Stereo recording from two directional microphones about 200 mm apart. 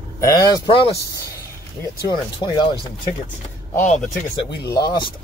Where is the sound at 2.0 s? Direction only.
20° left (ahead or behind).